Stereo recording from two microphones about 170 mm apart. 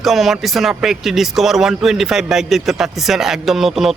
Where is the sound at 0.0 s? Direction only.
Centre (ahead or behind).